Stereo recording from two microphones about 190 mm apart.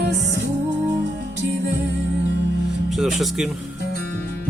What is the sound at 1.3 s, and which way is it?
Music, 65° right (ahead or behind).